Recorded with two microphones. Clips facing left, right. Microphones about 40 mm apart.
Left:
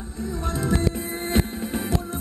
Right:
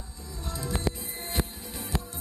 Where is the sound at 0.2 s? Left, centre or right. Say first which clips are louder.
Left 10 dB; left.